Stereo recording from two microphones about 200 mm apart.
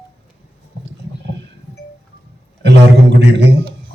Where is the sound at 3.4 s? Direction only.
65° right (ahead or behind).